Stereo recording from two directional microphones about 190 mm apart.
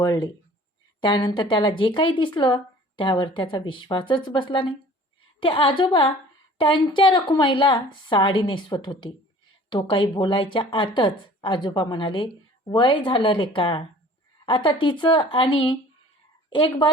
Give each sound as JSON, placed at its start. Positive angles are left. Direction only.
{"t": 0.0, "sound": "a woman's voice", "side_deg": 20}